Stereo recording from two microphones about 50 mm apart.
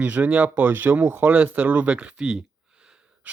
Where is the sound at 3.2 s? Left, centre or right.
Right.